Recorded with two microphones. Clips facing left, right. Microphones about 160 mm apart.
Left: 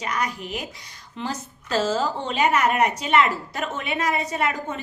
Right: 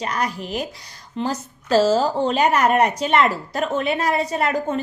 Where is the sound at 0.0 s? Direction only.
35° right (ahead or behind).